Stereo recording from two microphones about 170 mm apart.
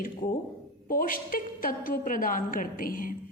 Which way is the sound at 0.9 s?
55° left (ahead or behind).